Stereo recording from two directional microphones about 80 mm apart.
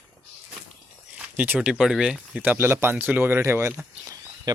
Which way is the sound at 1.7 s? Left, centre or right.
Centre.